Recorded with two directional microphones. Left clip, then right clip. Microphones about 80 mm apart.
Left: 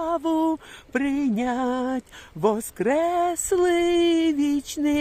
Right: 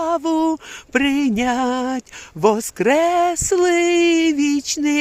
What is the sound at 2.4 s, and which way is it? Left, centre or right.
Speech, centre.